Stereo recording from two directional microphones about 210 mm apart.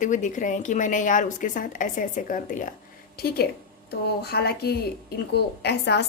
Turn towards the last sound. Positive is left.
turn(degrees=55)  # may be behind; listen again after turning